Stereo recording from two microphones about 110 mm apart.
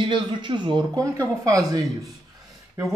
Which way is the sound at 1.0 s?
30° right (ahead or behind).